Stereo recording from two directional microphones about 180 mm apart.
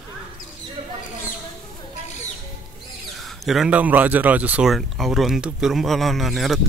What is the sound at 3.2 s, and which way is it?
Speech, centre (ahead or behind).